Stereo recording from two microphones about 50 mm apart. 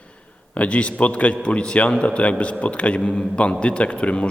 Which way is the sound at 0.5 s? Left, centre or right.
Left.